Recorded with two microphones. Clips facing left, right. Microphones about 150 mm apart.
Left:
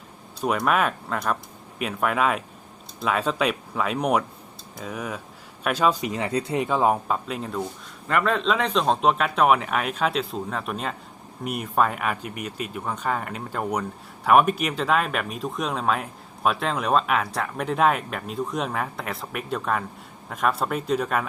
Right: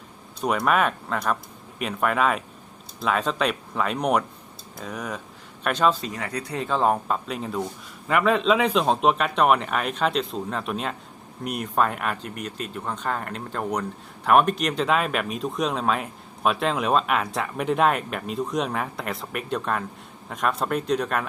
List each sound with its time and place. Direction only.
0.4 s speech: centre (ahead or behind)